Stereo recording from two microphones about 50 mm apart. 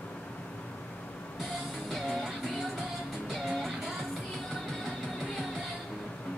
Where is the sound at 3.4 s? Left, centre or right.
Centre.